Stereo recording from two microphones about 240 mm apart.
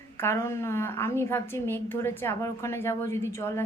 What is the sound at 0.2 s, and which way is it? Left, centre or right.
A woman's voice, centre.